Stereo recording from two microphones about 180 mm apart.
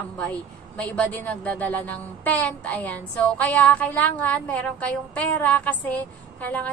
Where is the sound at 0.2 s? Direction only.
5° left (ahead or behind).